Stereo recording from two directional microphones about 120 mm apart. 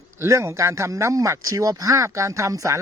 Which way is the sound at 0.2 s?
25° right (ahead or behind).